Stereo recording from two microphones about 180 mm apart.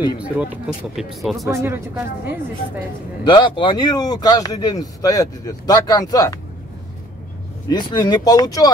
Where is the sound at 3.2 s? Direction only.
25° left (ahead or behind).